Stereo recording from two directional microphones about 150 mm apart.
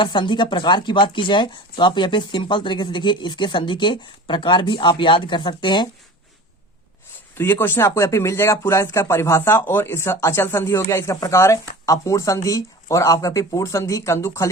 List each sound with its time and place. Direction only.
0.0 s speech: 30° left (ahead or behind)
7.3 s speech: 15° left (ahead or behind)